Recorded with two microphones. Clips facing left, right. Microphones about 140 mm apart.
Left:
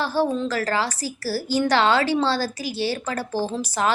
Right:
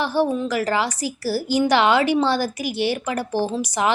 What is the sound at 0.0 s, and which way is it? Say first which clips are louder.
A woman's voice: right 2 dB; 15° right (ahead or behind).